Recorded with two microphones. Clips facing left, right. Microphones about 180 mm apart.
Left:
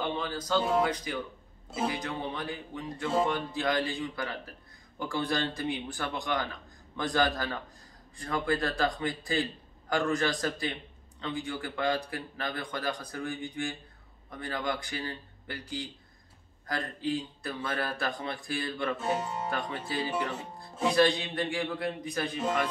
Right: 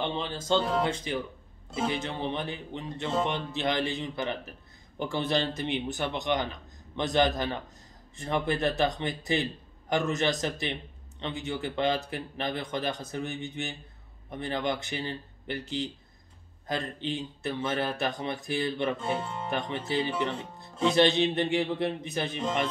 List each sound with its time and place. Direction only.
0.0 s a man's voice: 25° right (ahead or behind)
0.6 s speech: 5° left (ahead or behind)
0.8 s a man's voice: 25° right (ahead or behind)